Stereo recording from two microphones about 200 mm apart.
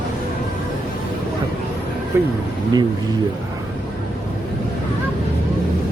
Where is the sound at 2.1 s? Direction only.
15° right (ahead or behind).